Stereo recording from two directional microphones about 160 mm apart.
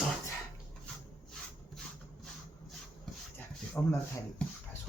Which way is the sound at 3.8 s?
10° left (ahead or behind).